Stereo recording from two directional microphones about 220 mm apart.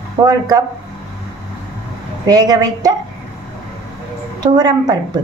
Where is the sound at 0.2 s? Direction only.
15° right (ahead or behind).